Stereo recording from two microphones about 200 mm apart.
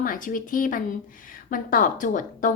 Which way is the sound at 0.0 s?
40° left (ahead or behind).